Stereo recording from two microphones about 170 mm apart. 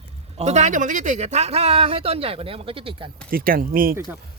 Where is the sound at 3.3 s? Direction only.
60° right (ahead or behind).